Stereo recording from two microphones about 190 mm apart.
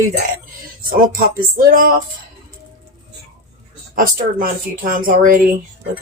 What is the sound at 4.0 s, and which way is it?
Speech, 50° right (ahead or behind).